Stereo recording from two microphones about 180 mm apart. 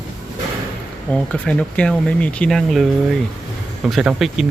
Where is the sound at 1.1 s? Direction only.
5° left (ahead or behind).